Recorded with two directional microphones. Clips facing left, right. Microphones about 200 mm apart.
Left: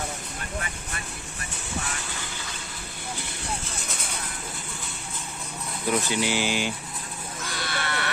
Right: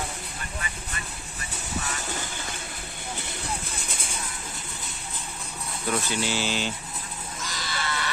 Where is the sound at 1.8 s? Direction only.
45° right (ahead or behind).